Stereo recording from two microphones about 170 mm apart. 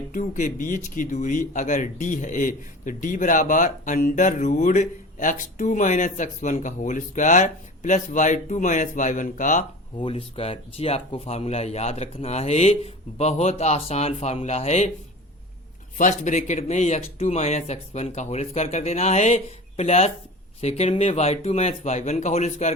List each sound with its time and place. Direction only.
0.1 s speech: 50° left (ahead or behind)
10.0 s speech: 35° left (ahead or behind)
16.0 s speech: 45° left (ahead or behind)